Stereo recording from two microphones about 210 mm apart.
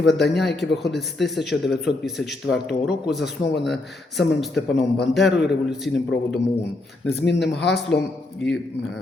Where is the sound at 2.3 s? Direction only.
55° left (ahead or behind).